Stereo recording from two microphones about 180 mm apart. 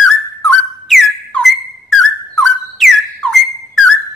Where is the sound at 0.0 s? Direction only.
Centre (ahead or behind).